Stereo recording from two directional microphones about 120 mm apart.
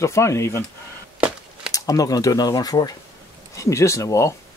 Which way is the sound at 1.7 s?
30° left (ahead or behind).